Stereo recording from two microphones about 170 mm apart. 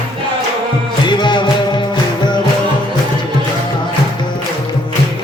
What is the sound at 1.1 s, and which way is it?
Music, 25° left (ahead or behind).